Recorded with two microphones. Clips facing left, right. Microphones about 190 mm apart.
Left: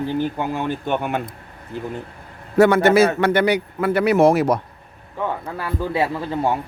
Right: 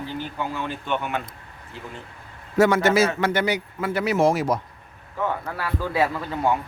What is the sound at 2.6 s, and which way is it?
A man's voice, 60° left (ahead or behind).